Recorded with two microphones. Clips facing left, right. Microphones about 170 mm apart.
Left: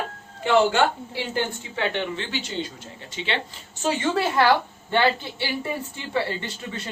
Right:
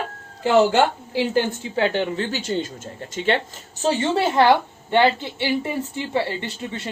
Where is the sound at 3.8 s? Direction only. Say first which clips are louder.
Right 3 dB; 30° right (ahead or behind).